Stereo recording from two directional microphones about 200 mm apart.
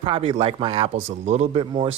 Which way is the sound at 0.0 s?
25° right (ahead or behind).